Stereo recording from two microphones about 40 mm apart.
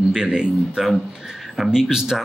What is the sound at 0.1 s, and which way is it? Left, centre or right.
Speech, right.